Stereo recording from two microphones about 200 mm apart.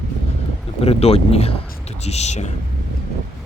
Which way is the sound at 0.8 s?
30° left (ahead or behind).